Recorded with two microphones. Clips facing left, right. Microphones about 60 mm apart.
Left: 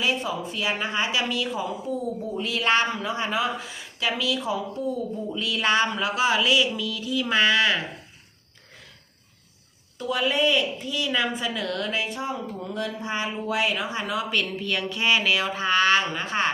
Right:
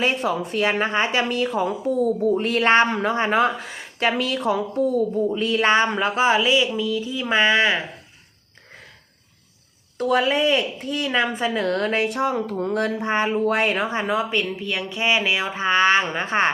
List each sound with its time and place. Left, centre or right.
0.0 s speech: right
5.3 s a sound: right
10.0 s speech: right
12.0 s speech: right